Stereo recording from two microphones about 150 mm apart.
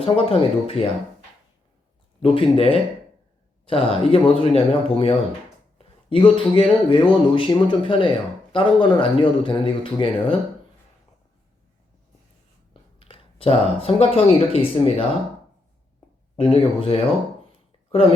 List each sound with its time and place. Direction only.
0.0 s speech: 40° left (ahead or behind)
2.2 s speech: 40° left (ahead or behind)
13.0 s speech: 40° left (ahead or behind)
16.4 s speech: 35° left (ahead or behind)